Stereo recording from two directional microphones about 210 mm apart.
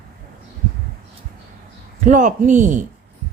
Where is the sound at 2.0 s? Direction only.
35° right (ahead or behind).